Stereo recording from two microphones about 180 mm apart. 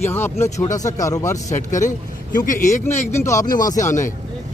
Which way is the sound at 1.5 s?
45° left (ahead or behind).